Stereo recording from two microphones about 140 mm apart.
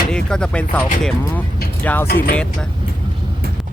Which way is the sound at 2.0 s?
90° left.